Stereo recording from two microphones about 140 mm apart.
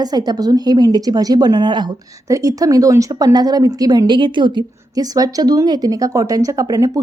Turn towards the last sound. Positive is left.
turn(degrees=-25)  # may be behind; listen again after turning